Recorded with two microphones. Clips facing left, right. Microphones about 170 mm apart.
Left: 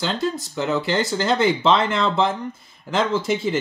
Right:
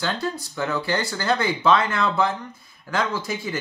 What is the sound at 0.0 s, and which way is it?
Speech, 20° left (ahead or behind).